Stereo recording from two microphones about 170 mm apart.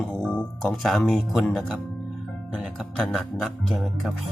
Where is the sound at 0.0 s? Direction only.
5° left (ahead or behind).